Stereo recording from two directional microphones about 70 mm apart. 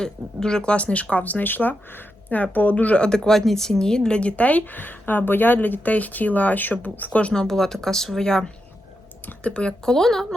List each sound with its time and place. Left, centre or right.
0.0 s a woman's voice: centre
3.2 s a woman's voice: centre
7.4 s speech: centre